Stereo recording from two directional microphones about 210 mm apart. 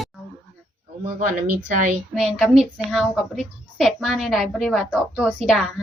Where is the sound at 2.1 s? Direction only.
5° right (ahead or behind).